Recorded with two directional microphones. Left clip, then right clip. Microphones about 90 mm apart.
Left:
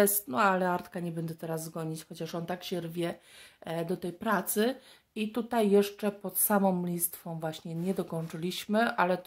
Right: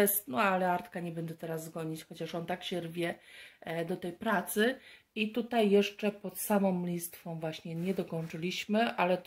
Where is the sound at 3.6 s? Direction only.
30° left (ahead or behind).